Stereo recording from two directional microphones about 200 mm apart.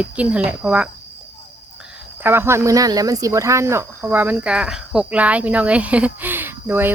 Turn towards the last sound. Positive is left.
turn(degrees=-10)  # may be behind; listen again after turning